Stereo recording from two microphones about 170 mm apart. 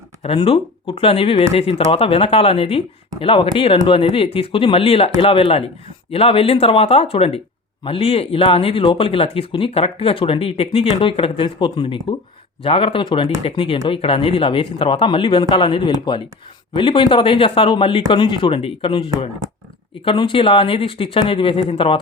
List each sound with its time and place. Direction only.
0.2 s speech: 35° left (ahead or behind)